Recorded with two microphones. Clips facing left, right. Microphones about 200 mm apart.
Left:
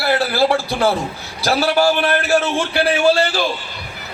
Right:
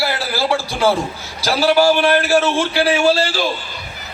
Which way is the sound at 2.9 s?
55° left (ahead or behind).